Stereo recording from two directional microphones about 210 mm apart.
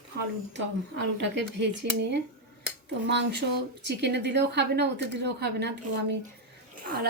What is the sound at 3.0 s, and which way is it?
A woman's voice, 55° right (ahead or behind).